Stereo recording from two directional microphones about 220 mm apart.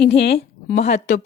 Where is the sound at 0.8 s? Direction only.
30° left (ahead or behind).